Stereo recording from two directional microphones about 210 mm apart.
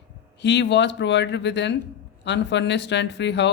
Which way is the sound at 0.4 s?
55° left (ahead or behind).